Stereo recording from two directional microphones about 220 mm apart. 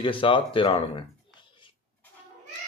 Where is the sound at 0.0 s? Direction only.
25° left (ahead or behind).